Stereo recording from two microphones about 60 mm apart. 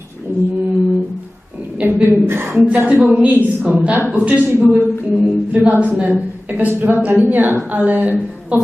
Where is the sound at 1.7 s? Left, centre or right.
Right.